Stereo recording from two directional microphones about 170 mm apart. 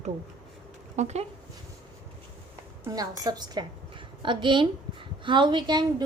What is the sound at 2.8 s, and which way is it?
A woman's voice, 20° right (ahead or behind).